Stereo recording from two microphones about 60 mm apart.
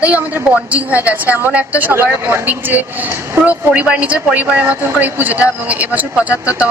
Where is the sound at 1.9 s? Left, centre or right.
Right.